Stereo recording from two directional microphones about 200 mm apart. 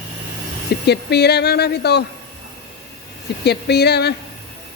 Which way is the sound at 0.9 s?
55° left (ahead or behind).